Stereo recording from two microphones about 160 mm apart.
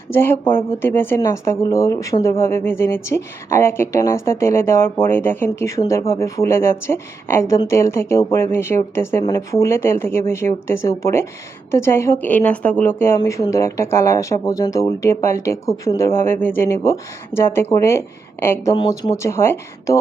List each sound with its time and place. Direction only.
0.1 s speech: 15° left (ahead or behind)
18.8 s speech: 30° left (ahead or behind)
19.1 s speech: 15° left (ahead or behind)